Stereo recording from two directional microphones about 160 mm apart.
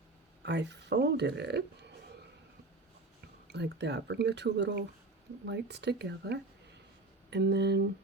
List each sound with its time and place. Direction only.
0.4 s speech: 90° right
3.4 s speech: 90° right